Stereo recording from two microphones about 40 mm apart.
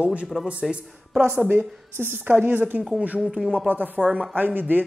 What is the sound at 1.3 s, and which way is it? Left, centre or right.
A woman's voice, right.